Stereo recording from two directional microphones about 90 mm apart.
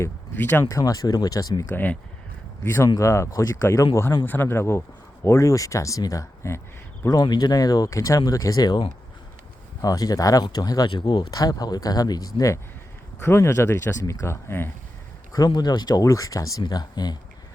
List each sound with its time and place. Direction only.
0.0 s speech: 25° left (ahead or behind)
0.7 s speech: 40° left (ahead or behind)
1.7 s speech: 20° left (ahead or behind)
7.1 s speech: 55° left (ahead or behind)
9.8 s speech: 40° left (ahead or behind)
13.1 s speech: 30° left (ahead or behind)
15.3 s speech: 50° left (ahead or behind)
16.0 s speech: 40° left (ahead or behind)